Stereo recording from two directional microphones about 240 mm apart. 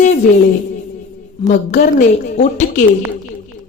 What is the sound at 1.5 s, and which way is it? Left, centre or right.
A woman's voice, left.